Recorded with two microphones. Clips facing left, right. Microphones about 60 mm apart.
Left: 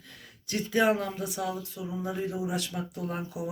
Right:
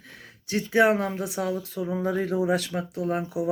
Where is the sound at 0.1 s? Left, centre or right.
Right.